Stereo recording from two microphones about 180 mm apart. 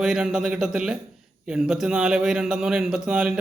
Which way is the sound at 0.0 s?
5° right (ahead or behind).